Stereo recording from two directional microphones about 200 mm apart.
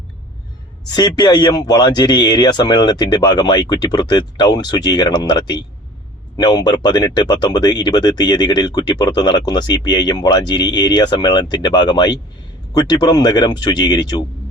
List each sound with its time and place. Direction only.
0.9 s speech: 20° left (ahead or behind)